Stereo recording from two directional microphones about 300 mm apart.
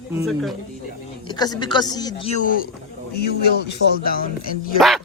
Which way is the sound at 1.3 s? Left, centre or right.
Centre.